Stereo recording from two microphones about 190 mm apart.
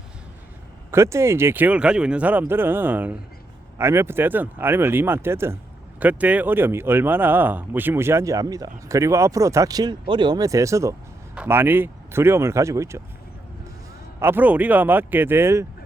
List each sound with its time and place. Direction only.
0.9 s speech: 15° right (ahead or behind)
14.2 s speech: 10° right (ahead or behind)